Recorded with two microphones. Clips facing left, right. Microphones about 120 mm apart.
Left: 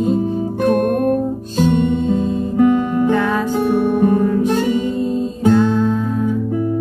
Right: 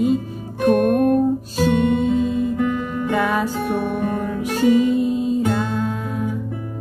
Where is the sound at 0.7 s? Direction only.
45° left (ahead or behind).